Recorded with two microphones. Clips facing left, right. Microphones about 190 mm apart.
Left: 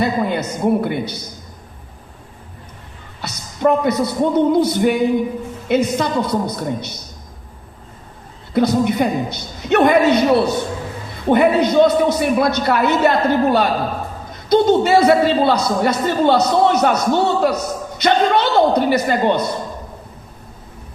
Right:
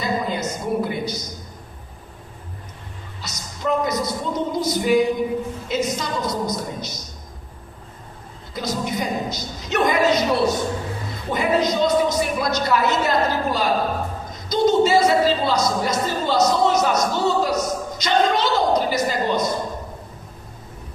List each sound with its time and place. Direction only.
0.0 s a sound: 60° left (ahead or behind)
3.2 s speech: 60° left (ahead or behind)
8.5 s a man's voice: 60° left (ahead or behind)